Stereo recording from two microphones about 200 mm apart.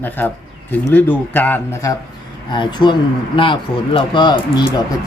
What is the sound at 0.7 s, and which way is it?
Speech, 10° left (ahead or behind).